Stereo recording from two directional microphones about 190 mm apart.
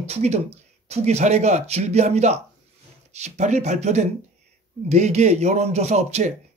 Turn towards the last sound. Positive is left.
turn(degrees=-35)  # may be behind; listen again after turning